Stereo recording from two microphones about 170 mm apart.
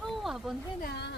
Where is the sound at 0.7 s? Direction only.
75° left (ahead or behind).